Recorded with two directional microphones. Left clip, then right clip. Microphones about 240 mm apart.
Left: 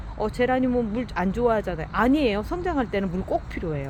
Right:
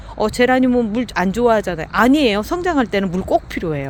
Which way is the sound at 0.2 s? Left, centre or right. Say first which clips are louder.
Right 8 dB; right.